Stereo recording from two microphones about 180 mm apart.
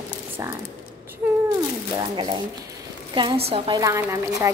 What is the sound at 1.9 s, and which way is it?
A woman's voice, 25° right (ahead or behind).